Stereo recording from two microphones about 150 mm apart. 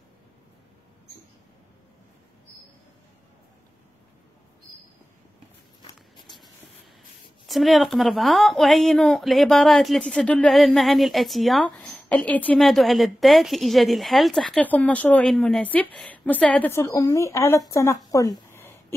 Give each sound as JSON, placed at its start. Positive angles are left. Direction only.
{"t": 6.2, "sound": "writing", "side_deg": 0}
{"t": 7.4, "sound": "speech", "side_deg": 0}
{"t": 18.5, "sound": "a sound", "side_deg": 15}